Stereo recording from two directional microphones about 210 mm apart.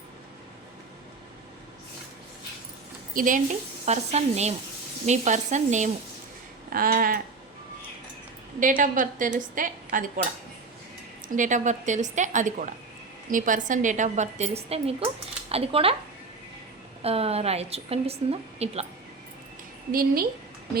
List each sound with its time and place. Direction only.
3.2 s a woman's voice: 40° right (ahead or behind)
6.7 s a sound: 45° right (ahead or behind)
8.6 s a woman's voice: 40° right (ahead or behind)
11.3 s a woman's voice: 35° right (ahead or behind)
17.0 s a woman's voice: 30° right (ahead or behind)
19.9 s a sound: 45° right (ahead or behind)